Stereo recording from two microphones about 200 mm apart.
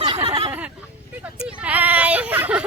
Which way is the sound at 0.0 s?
25° right (ahead or behind).